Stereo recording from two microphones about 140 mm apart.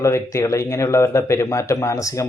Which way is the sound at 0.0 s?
20° left (ahead or behind).